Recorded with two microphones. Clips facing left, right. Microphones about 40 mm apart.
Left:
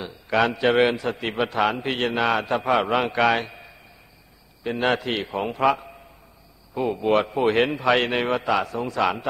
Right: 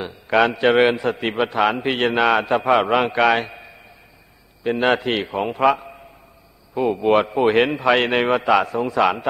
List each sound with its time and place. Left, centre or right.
0.0 s a man's voice: right
4.6 s a man's voice: centre